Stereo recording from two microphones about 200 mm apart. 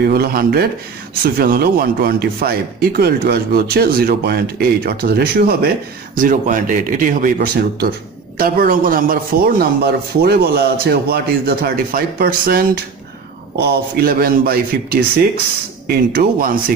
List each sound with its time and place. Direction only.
0.0 s a man's voice: 50° right (ahead or behind)